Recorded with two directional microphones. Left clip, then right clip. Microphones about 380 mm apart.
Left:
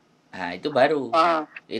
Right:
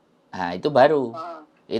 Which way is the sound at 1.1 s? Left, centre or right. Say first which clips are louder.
Left 15 dB; left.